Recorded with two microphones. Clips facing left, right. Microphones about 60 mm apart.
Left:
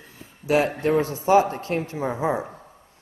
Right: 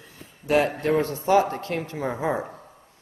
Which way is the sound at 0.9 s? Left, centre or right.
Right.